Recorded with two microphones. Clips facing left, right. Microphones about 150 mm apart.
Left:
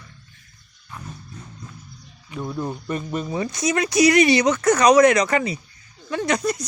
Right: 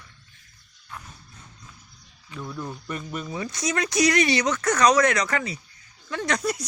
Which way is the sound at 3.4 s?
10° left (ahead or behind).